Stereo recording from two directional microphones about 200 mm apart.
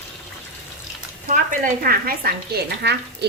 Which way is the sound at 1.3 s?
45° right (ahead or behind).